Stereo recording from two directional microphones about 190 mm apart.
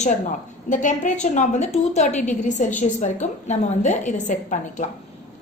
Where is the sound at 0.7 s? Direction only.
40° left (ahead or behind).